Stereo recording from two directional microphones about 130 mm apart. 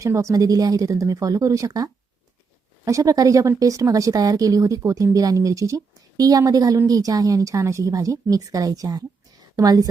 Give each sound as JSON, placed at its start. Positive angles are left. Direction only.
{"t": 0.0, "sound": "speech", "side_deg": -25}